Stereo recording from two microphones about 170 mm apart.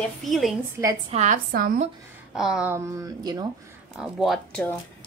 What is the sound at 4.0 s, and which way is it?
Speech, centre (ahead or behind).